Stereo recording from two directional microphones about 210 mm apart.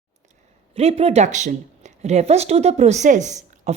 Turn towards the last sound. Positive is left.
turn(degrees=-35)  # may be behind; listen again after turning